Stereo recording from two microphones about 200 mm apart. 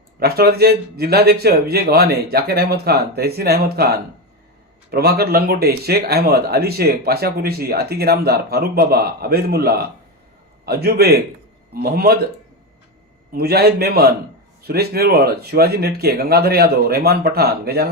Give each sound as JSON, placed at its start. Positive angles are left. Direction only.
{"t": 0.2, "sound": "speech", "side_deg": -50}
{"t": 13.3, "sound": "speech", "side_deg": -50}